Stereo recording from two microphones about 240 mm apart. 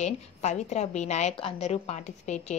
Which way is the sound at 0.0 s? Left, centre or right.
Left.